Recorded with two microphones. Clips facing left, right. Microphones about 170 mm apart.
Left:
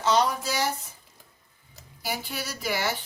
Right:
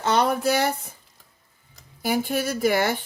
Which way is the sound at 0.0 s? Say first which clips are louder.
Right 3 dB; 60° right (ahead or behind).